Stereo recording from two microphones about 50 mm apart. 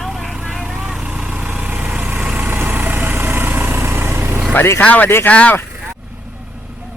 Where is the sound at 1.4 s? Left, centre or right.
Right.